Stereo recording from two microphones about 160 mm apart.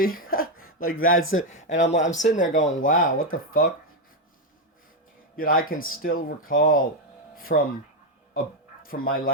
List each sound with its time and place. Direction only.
0.0 s speech: 65° left (ahead or behind)
5.4 s speech: 65° left (ahead or behind)
8.8 s speech: 65° left (ahead or behind)